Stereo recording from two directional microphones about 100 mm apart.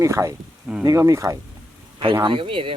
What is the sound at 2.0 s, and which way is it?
Speech, 55° right (ahead or behind).